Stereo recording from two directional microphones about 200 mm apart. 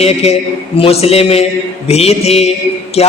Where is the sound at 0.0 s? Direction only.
30° left (ahead or behind).